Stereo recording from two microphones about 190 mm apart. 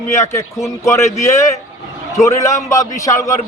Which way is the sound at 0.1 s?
15° left (ahead or behind).